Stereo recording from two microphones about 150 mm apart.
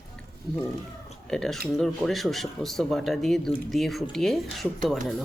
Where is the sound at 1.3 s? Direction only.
5° left (ahead or behind).